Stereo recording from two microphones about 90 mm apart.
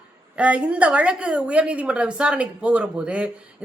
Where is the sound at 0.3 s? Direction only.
15° right (ahead or behind).